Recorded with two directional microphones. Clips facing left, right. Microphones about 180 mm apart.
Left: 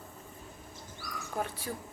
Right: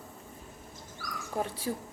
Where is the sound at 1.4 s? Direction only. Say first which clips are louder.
Right 2 dB; 30° right (ahead or behind).